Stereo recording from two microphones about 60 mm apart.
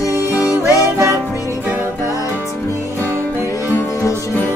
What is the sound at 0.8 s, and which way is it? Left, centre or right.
Music, right.